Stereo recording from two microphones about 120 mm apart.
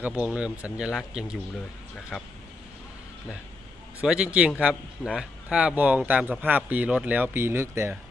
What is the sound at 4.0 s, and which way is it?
Speech, 10° right (ahead or behind).